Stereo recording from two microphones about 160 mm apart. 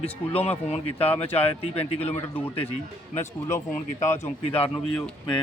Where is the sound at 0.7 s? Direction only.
40° left (ahead or behind).